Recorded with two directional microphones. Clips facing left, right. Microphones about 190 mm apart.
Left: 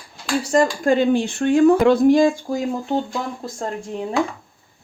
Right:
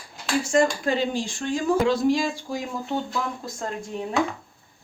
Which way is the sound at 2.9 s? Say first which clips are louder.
Left 4 dB; 30° left (ahead or behind).